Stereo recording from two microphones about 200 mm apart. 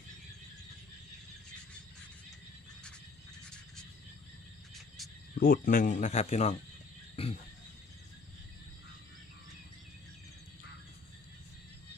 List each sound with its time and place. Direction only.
5.3 s speech: 45° left (ahead or behind)
7.2 s wild animals: 30° left (ahead or behind)